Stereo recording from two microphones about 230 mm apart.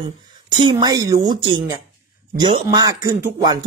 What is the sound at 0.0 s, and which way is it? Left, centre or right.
A man's voice, centre.